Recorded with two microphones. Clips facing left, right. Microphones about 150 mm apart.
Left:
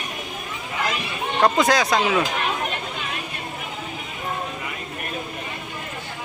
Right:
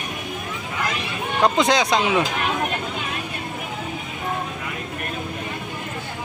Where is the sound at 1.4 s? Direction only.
20° right (ahead or behind).